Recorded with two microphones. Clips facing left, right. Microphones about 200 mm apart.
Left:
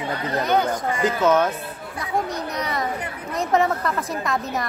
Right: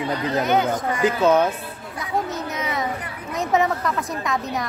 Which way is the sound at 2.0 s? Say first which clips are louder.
Even; centre (ahead or behind).